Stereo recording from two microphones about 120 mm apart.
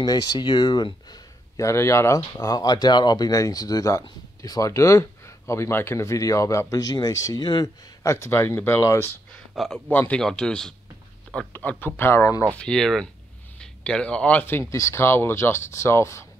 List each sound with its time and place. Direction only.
0.0 s speech: 35° left (ahead or behind)
9.6 s a man's voice: 10° left (ahead or behind); by 12.4 s 25° left (ahead or behind)
12.5 s speech: 5° left (ahead or behind); by 16.3 s 25° left (ahead or behind)